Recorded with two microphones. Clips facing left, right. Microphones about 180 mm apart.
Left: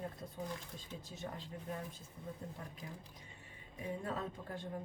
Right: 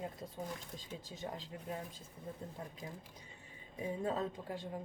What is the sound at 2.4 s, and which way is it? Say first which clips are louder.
Speech: right 2 dB; 30° right (ahead or behind).